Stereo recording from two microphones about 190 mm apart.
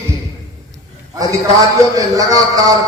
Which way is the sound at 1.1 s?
15° right (ahead or behind).